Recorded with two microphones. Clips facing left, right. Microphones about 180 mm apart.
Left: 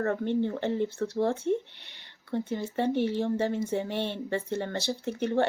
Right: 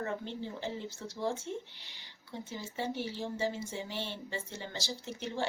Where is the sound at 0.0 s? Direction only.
60° left (ahead or behind).